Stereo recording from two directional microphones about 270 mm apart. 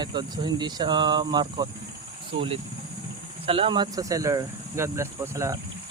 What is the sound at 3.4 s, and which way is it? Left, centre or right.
Speech, centre.